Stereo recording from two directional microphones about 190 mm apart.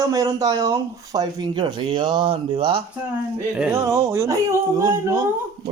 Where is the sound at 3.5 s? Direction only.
10° right (ahead or behind).